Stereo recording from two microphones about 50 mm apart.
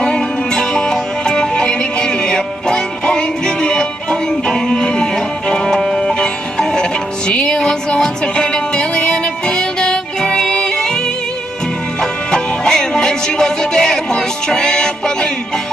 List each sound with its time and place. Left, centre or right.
0.0 s music: centre
6.1 s music: centre
12.0 s music: centre